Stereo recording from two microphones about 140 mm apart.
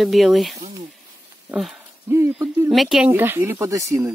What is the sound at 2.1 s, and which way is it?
Hoot, 20° right (ahead or behind).